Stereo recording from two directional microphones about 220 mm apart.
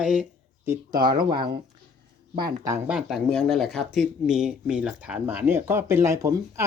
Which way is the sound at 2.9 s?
5° right (ahead or behind).